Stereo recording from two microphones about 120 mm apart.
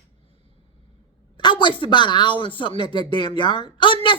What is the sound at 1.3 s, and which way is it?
Speech, 40° left (ahead or behind).